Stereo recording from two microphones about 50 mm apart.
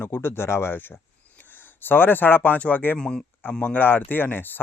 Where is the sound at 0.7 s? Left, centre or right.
Left.